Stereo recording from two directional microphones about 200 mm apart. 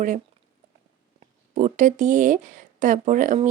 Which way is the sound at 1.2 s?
35° right (ahead or behind).